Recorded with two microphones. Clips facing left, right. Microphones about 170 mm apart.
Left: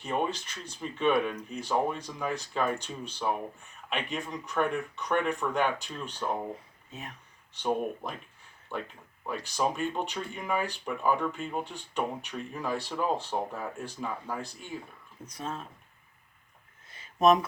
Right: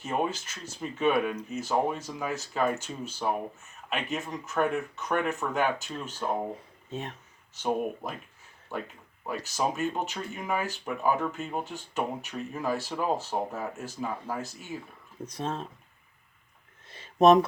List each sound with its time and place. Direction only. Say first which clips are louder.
0.0 s speech: right 1 dB; 5° right (ahead or behind)
7.5 s speech: right 1 dB; 5° right (ahead or behind)
9.2 s speech: even; 5° right (ahead or behind)
15.4 s speech: right 4 dB; 25° right (ahead or behind)
16.9 s a sound: right 4 dB; 30° right (ahead or behind)